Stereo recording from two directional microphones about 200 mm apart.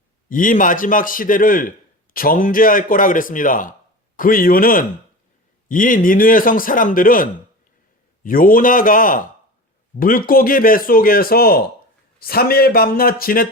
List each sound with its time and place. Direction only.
0.3 s a man's voice: 40° left (ahead or behind)